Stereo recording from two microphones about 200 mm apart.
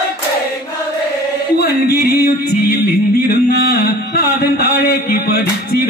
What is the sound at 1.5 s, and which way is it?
Music, 50° left (ahead or behind).